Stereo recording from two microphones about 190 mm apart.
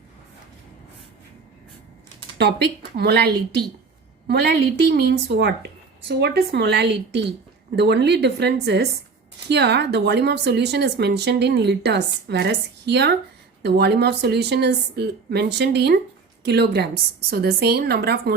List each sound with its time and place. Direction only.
2.4 s speech: 60° right (ahead or behind)